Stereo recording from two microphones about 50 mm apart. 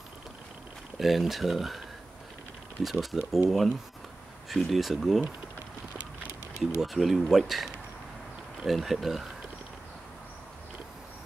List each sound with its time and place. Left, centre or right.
0.9 s speech: centre
2.8 s speech: centre
6.6 s speech: centre